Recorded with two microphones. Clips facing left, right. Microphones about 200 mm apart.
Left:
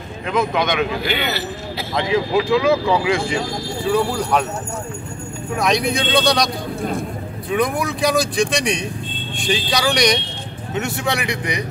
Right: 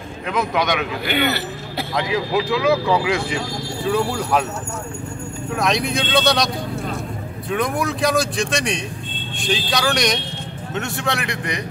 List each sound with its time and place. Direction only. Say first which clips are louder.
0.3 s a man's voice: left 1 dB; 5° right (ahead or behind)
1.0 s a man's voice: right 2 dB; 55° right (ahead or behind)
2.0 s speech: left 3 dB; 5° right (ahead or behind)
5.6 s speech: left 2 dB; centre (ahead or behind)